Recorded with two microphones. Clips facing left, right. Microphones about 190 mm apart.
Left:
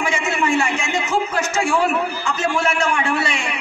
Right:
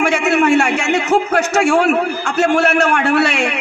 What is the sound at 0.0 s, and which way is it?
A man's voice, 70° right (ahead or behind).